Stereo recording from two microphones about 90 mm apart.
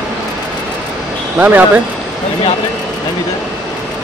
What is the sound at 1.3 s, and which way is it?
Speech, 20° right (ahead or behind).